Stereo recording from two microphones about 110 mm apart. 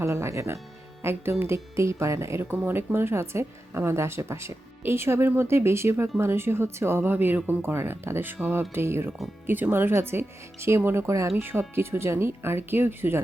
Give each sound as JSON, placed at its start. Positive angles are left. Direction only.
{"t": 0.0, "sound": "speech", "side_deg": -25}